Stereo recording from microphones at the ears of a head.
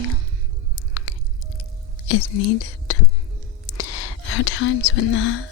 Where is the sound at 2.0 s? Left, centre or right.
Left.